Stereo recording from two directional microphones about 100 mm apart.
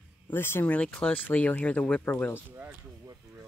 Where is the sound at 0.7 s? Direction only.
10° left (ahead or behind).